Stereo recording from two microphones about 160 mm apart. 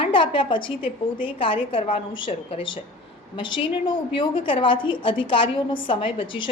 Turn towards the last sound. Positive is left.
turn(degrees=30)  # may be behind; listen again after turning